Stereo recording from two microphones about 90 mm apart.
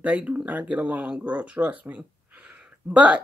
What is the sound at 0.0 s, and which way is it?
Speech, 15° right (ahead or behind).